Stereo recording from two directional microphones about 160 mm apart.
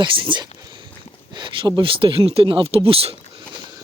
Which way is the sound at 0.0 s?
30° right (ahead or behind).